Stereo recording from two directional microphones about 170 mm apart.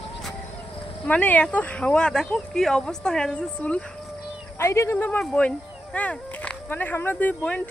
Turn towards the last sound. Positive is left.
turn(degrees=10)  # may be behind; listen again after turning